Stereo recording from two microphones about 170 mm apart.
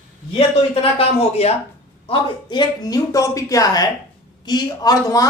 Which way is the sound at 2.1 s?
25° left (ahead or behind).